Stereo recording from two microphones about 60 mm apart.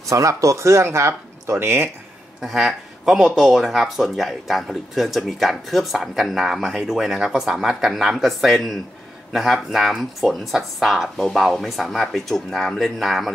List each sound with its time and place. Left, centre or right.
0.1 s speech: right
2.4 s speech: centre